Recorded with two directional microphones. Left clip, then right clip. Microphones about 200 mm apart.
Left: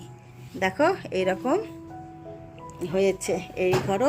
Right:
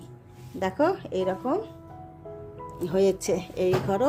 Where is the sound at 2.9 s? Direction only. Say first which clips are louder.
Even; 20° right (ahead or behind).